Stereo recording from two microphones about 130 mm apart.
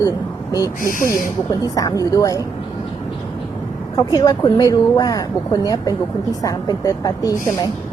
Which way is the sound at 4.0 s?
30° left (ahead or behind).